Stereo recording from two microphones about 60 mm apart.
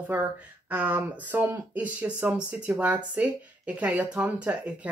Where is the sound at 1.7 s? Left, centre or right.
Right.